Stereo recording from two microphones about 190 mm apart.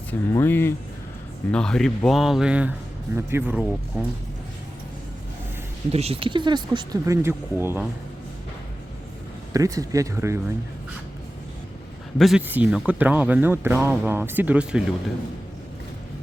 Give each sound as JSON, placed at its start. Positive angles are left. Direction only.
{"t": 0.1, "sound": "speech", "side_deg": 10}
{"t": 5.9, "sound": "speech", "side_deg": -30}
{"t": 9.5, "sound": "speech", "side_deg": -20}
{"t": 12.2, "sound": "speech", "side_deg": -5}